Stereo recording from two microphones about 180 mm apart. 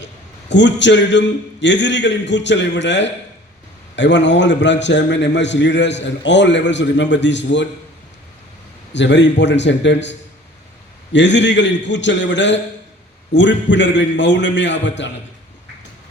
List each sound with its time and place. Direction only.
0.0 s a man's voice: 80° left
8.9 s a man's voice: 80° left